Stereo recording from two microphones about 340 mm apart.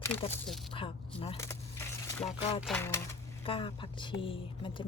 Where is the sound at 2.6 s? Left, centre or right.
Centre.